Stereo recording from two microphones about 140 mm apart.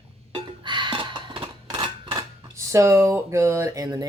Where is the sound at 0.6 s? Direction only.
35° right (ahead or behind).